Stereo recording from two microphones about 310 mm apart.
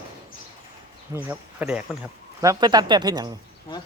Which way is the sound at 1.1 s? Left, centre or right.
Centre.